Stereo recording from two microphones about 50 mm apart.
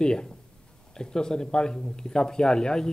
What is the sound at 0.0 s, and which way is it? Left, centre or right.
Speech, centre.